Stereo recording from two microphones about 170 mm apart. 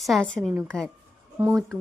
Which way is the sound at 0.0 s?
Centre (ahead or behind).